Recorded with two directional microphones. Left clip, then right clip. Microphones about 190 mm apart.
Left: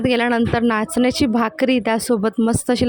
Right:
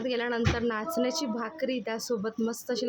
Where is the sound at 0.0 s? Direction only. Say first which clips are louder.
Left 11 dB; 50° left (ahead or behind).